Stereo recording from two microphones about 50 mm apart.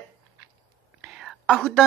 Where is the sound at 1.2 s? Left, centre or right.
Centre.